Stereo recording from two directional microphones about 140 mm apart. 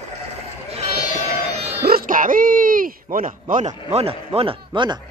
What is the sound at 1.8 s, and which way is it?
A man's voice, 90° right.